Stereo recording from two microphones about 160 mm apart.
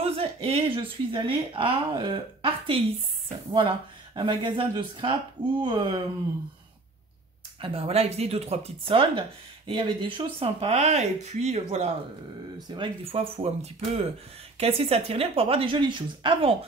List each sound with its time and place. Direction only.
0.0 s speech: 40° right (ahead or behind)
7.6 s speech: 35° right (ahead or behind)
12.6 s speech: 30° right (ahead or behind)